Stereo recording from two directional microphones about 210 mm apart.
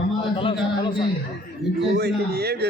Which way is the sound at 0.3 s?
25° left (ahead or behind).